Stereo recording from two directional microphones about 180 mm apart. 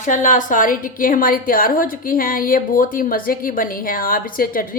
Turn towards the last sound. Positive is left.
turn(degrees=50)  # may be behind; listen again after turning